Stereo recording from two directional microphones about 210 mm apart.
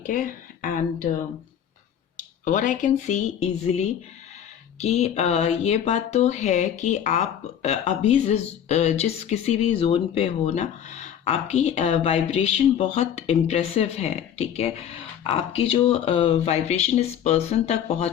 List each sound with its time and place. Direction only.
0.1 s speech: 40° left (ahead or behind)
2.1 s speech: 35° left (ahead or behind)